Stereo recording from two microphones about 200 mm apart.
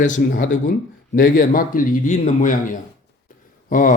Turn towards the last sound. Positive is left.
turn(degrees=40)  # may be behind; listen again after turning